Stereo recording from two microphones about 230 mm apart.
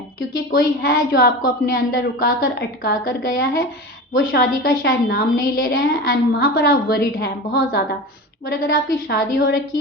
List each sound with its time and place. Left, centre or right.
0.5 s a woman's voice: left